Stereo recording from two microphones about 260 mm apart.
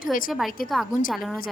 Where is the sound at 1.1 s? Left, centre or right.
Centre.